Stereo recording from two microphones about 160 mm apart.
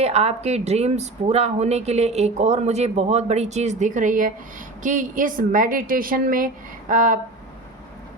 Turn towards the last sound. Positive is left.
turn(degrees=-55)  # may be behind; listen again after turning